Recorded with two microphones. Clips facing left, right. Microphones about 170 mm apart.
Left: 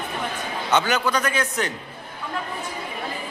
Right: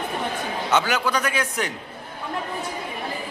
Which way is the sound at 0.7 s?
5° right (ahead or behind).